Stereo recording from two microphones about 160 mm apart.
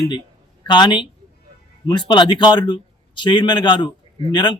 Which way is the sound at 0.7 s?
30° left (ahead or behind).